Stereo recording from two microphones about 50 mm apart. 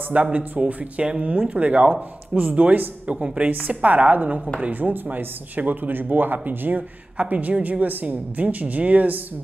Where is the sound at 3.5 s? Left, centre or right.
Right.